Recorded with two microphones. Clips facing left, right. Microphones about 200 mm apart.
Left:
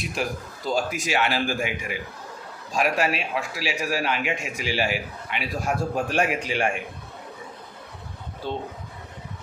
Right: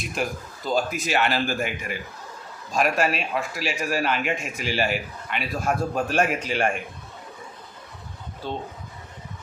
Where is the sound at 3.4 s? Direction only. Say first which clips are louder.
Even; 50° right (ahead or behind).